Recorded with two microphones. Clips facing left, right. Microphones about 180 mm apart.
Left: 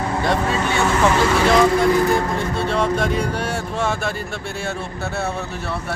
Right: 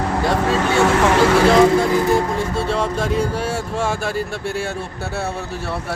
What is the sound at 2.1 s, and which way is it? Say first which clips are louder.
Music: right 2 dB; 5° right (ahead or behind).